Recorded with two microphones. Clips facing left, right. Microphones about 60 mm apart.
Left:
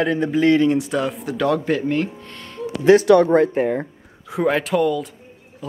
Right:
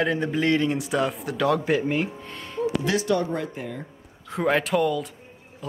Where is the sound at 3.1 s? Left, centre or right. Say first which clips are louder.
Left 11 dB; left.